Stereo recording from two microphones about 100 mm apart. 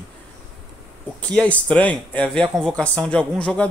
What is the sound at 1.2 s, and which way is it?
A man's voice, 15° left (ahead or behind).